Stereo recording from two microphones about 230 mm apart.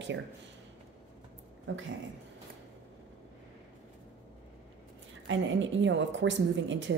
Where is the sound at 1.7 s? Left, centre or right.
Right.